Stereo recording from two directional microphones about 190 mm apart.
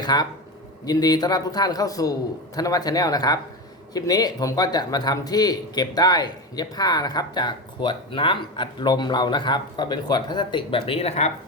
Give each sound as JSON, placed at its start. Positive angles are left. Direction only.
{"t": 0.0, "sound": "a man's voice", "side_deg": 20}